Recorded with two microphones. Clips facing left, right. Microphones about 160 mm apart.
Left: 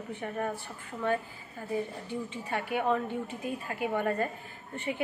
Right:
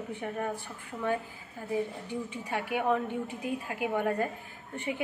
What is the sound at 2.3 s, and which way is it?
A woman's voice, 10° right (ahead or behind).